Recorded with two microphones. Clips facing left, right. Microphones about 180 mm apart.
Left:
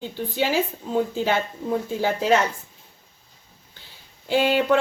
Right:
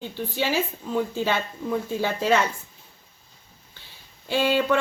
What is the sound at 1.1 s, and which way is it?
Speech, 15° left (ahead or behind).